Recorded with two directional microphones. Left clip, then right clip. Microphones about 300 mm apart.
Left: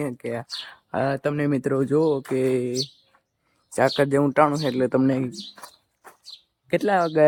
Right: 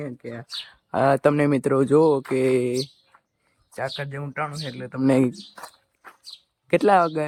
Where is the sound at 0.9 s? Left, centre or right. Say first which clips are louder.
Right 5 dB; centre.